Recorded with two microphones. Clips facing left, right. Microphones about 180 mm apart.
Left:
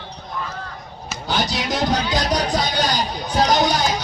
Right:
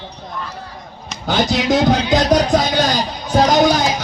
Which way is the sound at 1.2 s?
50° right (ahead or behind).